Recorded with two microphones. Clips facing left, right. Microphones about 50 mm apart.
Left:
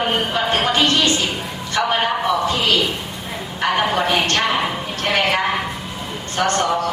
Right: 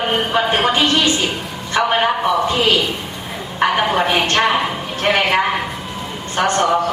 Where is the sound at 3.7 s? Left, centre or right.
Centre.